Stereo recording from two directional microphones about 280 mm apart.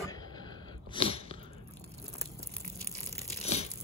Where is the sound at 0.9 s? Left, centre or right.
Centre.